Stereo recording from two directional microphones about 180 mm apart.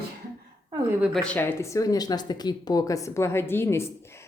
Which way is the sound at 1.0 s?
5° right (ahead or behind).